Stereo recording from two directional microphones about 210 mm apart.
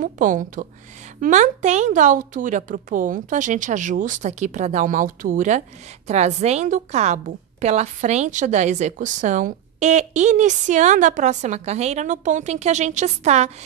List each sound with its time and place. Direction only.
0.0 s a woman's voice: 40° right (ahead or behind)